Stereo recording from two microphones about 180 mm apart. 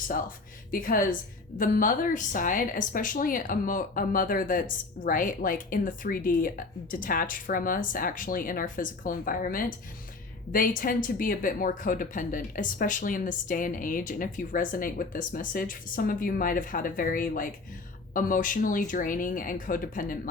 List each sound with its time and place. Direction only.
0.7 s speech: 50° left (ahead or behind)